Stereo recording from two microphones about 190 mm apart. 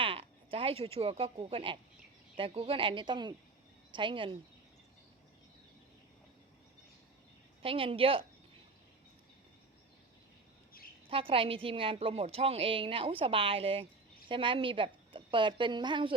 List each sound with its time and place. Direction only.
0.0 s a woman's voice: 30° right (ahead or behind)
7.6 s a woman's voice: 30° right (ahead or behind)
11.1 s a woman's voice: 30° right (ahead or behind)